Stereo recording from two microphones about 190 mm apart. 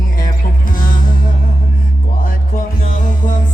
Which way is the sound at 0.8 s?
45° left (ahead or behind).